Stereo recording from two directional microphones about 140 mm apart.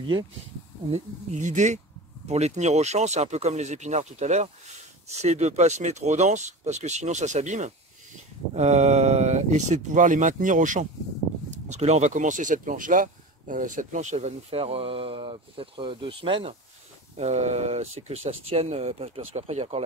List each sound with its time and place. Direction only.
0.9 s speech: 55° right (ahead or behind)
11.5 s speech: 55° right (ahead or behind)
17.2 s speech: 50° right (ahead or behind)